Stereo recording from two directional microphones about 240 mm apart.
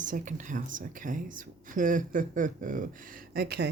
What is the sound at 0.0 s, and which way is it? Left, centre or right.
Speech, right.